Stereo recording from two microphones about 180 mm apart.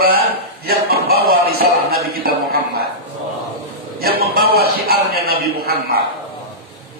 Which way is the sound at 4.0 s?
55° right (ahead or behind).